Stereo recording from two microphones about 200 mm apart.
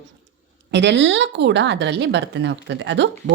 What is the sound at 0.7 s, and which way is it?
A woman's voice, 60° right (ahead or behind).